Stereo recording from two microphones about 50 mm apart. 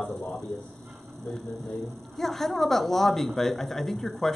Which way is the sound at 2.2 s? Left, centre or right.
Centre.